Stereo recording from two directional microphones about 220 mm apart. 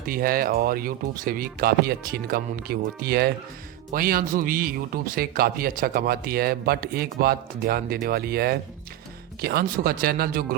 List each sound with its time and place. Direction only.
0.0 s a man's voice: 40° right (ahead or behind)